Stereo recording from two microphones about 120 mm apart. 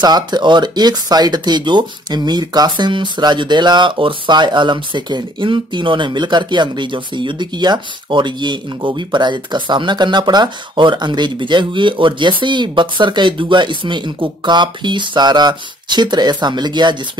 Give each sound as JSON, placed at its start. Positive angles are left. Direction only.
{"t": 0.0, "sound": "speech", "side_deg": -35}